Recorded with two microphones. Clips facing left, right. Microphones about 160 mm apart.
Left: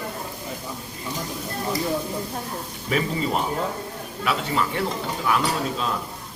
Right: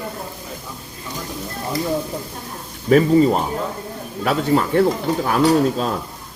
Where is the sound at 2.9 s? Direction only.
40° right (ahead or behind).